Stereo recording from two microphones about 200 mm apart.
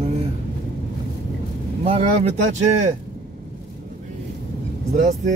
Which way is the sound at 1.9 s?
30° right (ahead or behind).